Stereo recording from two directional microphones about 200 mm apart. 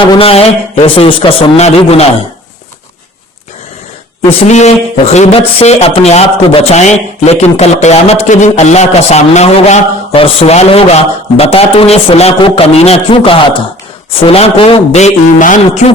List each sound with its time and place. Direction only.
0.0 s a man's voice: 25° left (ahead or behind)
4.4 s a man's voice: 35° left (ahead or behind)